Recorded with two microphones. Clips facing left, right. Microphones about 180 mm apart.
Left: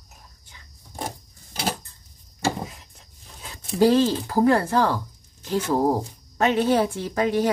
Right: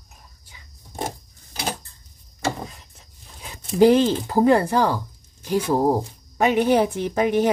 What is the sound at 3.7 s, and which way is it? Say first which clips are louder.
Speech: right 3 dB; 20° right (ahead or behind).